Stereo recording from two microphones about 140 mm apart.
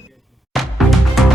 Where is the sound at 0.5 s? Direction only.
Centre (ahead or behind).